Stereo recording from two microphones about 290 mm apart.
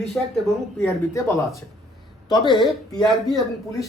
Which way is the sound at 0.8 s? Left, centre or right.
Centre.